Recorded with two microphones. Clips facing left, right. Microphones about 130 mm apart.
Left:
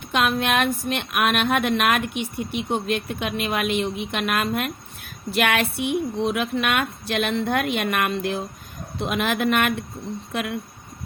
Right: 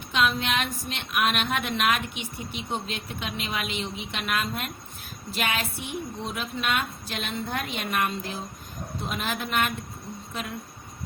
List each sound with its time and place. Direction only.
0.1 s a woman's voice: 55° left (ahead or behind); by 10.6 s 75° left (ahead or behind)